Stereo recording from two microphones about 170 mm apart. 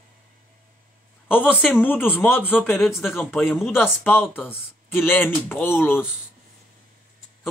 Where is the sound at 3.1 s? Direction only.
10° left (ahead or behind).